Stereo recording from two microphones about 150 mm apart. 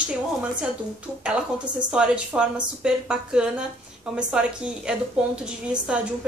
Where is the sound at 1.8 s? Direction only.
5° right (ahead or behind).